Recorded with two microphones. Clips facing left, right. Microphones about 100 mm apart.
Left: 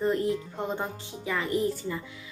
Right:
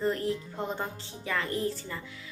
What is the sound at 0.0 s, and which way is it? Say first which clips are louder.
A woman's voice: left 3 dB; 20° left (ahead or behind).